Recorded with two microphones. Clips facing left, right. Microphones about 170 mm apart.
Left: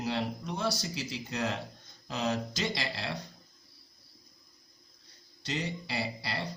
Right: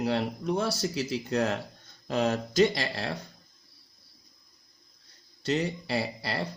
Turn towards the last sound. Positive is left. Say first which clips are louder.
# right 5 dB
turn(degrees=-50)  # may be behind; listen again after turning